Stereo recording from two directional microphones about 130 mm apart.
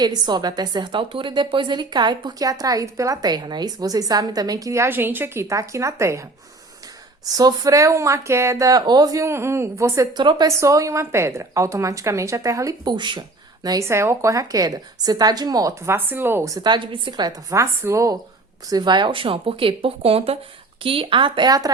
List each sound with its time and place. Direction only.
0.0 s a woman's voice: 35° right (ahead or behind)
7.3 s a woman's voice: 30° right (ahead or behind)
10.2 s a woman's voice: 35° right (ahead or behind)
16.0 s a woman's voice: 15° right (ahead or behind)
18.7 s speech: 35° right (ahead or behind)